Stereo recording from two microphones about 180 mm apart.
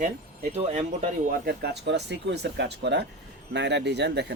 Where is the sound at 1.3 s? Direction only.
60° right (ahead or behind).